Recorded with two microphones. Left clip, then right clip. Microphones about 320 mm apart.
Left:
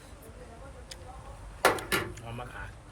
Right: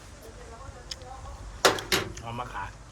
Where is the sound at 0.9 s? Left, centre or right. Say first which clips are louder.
Right 8 dB; centre.